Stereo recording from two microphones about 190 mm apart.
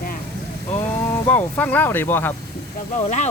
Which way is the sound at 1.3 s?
10° left (ahead or behind).